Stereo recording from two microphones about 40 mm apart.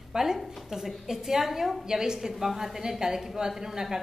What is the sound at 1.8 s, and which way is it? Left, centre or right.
A woman's voice, centre.